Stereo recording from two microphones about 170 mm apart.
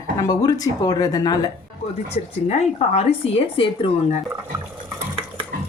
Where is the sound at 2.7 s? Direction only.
35° left (ahead or behind).